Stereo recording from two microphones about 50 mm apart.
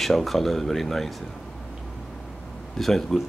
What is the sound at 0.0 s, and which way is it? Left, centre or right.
Speech, centre.